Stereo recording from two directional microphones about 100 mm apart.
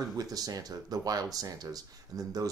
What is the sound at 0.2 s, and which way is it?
Speech, 40° right (ahead or behind).